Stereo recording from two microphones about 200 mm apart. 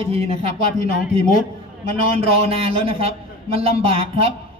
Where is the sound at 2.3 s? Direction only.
30° right (ahead or behind).